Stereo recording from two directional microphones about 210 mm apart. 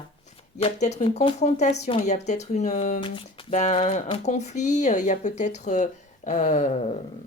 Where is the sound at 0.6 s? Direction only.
30° left (ahead or behind).